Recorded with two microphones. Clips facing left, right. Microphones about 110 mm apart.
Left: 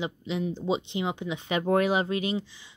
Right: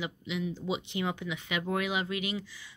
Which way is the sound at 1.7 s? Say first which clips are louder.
Left 8 dB; 40° left (ahead or behind).